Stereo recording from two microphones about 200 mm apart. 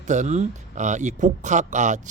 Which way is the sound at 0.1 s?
35° right (ahead or behind).